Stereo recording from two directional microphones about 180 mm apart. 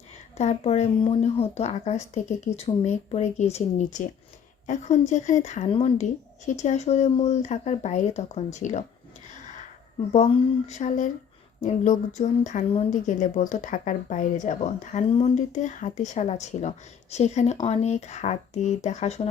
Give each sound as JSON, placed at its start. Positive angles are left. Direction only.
{"t": 0.3, "sound": "speech", "side_deg": 35}
{"t": 10.1, "sound": "a woman's voice", "side_deg": 35}